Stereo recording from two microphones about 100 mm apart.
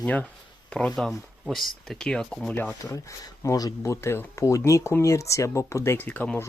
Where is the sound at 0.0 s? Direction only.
15° left (ahead or behind).